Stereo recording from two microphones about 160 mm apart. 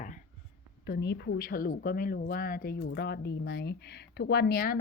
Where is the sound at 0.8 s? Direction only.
90° left; by 4.8 s 70° left (ahead or behind).